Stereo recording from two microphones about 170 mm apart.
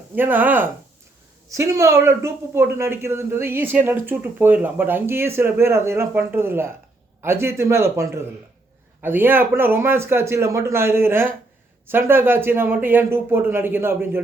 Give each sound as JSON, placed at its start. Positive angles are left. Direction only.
{"t": 0.2, "sound": "speech", "side_deg": -10}